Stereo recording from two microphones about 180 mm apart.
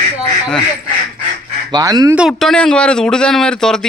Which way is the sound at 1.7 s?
20° right (ahead or behind).